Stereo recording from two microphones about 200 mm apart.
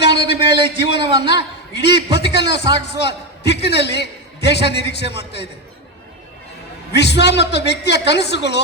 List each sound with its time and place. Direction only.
0.0 s a sound: 55° left (ahead or behind)
0.3 s a man's voice: 25° right (ahead or behind)
1.3 s a woman's voice: 60° left (ahead or behind)
6.9 s a man's voice: 55° left (ahead or behind)